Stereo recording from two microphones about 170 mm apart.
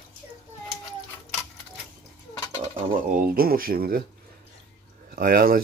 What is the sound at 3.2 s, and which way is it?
Speech, 60° right (ahead or behind).